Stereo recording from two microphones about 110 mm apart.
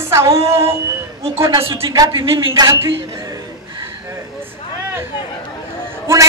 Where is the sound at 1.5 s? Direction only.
60° right (ahead or behind).